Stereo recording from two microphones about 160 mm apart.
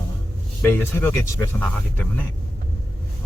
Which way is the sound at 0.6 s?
15° left (ahead or behind).